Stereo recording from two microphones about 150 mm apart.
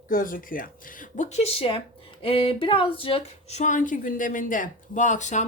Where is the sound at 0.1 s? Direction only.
65° left (ahead or behind).